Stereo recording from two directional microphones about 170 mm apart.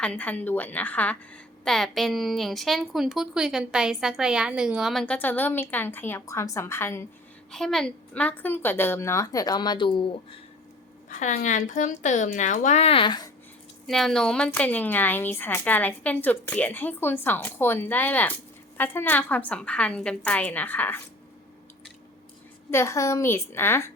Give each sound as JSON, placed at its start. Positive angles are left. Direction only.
{"t": 0.0, "sound": "a woman's voice", "side_deg": 5}
{"t": 7.5, "sound": "a woman's voice", "side_deg": 0}
{"t": 11.1, "sound": "a woman's voice", "side_deg": 45}
{"t": 13.8, "sound": "a woman's voice", "side_deg": 0}
{"t": 22.7, "sound": "a woman's voice", "side_deg": 15}